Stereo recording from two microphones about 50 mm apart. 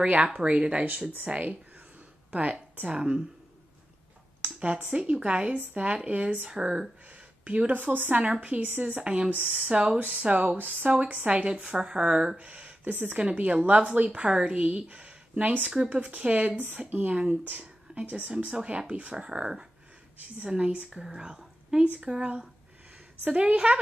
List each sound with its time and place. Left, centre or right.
0.0 s speech: right
2.9 s speech: centre
4.5 s speech: right
8.6 s speech: right
9.0 s speech: right
11.2 s speech: right
12.9 s speech: right
13.2 s a woman's voice: right
23.3 s speech: right